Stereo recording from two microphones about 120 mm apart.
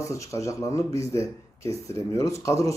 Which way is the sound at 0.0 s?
25° left (ahead or behind).